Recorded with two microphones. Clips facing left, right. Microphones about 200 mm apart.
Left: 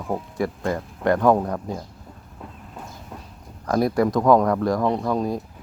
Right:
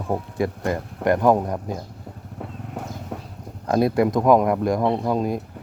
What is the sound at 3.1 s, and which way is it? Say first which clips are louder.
Clip-clop: right 6 dB; 75° right (ahead or behind).